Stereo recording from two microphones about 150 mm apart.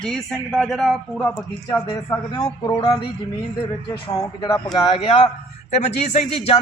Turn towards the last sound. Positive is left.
turn(degrees=50)  # may be behind; listen again after turning